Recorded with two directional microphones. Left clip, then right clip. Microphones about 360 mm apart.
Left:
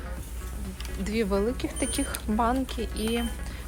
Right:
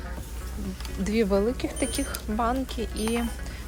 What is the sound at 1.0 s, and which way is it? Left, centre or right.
Speech, centre.